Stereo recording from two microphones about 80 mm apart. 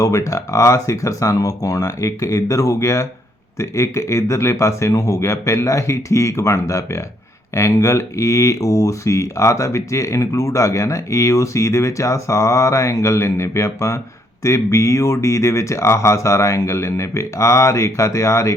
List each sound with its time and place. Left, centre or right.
0.0 s speech: left